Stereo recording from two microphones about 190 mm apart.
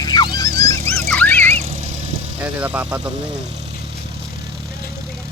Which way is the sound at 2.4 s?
10° right (ahead or behind).